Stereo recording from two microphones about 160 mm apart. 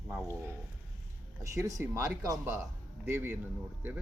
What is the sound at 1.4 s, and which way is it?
Speech, 20° right (ahead or behind).